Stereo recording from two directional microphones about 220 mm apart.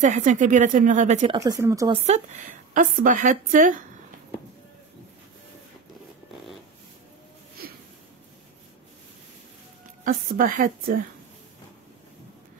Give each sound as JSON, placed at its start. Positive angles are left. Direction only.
{"t": 0.0, "sound": "a woman's voice", "side_deg": -35}
{"t": 1.3, "sound": "speech", "side_deg": -15}
{"t": 2.0, "sound": "a woman's voice", "side_deg": -35}
{"t": 10.0, "sound": "a woman's voice", "side_deg": -40}